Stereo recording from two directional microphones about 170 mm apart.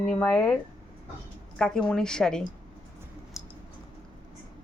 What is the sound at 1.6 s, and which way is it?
Speech, 5° left (ahead or behind).